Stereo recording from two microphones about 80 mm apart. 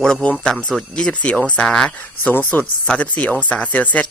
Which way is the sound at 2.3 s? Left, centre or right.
Left.